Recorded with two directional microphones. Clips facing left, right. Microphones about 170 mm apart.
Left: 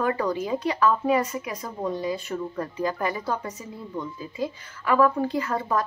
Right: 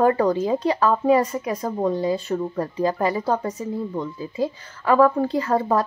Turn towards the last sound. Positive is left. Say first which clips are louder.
# right 5 dB
turn(degrees=-35)  # may be behind; listen again after turning